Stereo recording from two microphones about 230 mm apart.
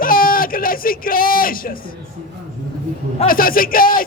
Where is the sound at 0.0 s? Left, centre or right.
Left.